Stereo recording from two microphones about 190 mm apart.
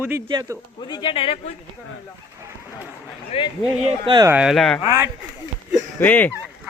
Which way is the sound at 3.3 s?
30° left (ahead or behind).